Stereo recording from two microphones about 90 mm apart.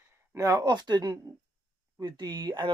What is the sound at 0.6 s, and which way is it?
Speech, 50° right (ahead or behind).